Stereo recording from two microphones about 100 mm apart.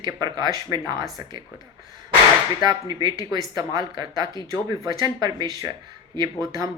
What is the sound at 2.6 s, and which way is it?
Speech, 45° right (ahead or behind).